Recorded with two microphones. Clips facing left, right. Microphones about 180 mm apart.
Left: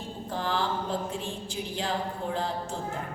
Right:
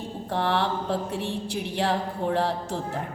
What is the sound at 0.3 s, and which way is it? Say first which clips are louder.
Mantra: right 4 dB; 70° right (ahead or behind).